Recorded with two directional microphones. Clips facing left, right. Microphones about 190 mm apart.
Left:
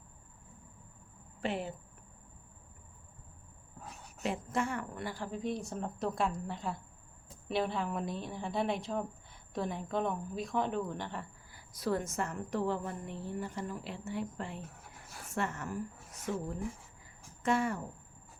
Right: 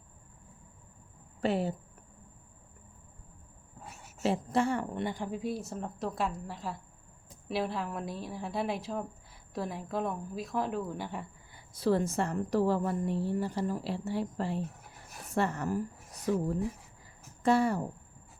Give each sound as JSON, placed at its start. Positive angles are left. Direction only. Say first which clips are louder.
{"t": 1.4, "sound": "speech", "louder": "right 6 dB", "side_deg": -35}
{"t": 4.2, "sound": "a woman's voice", "louder": "right 5 dB", "side_deg": -35}
{"t": 11.5, "sound": "a woman's voice", "louder": "right 5 dB", "side_deg": -30}